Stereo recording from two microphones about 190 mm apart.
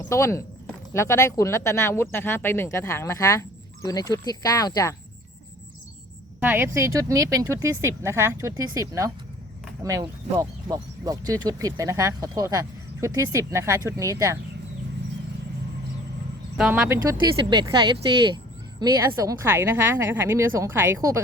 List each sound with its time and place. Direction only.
0.1 s speech: 15° left (ahead or behind)
6.4 s speech: 10° right (ahead or behind)
16.6 s speech: 5° right (ahead or behind)
17.5 s speech: 25° right (ahead or behind)